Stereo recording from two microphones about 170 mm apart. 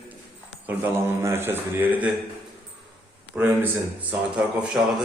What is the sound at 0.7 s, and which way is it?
A man's voice, 10° right (ahead or behind).